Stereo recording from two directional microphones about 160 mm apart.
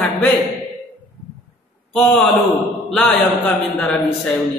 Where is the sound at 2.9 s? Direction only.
5° left (ahead or behind).